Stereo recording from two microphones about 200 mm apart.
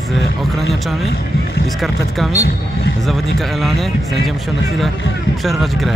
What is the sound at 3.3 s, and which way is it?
Speech, centre (ahead or behind).